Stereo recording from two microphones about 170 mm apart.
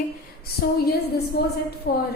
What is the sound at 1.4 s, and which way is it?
Speech, 70° left (ahead or behind).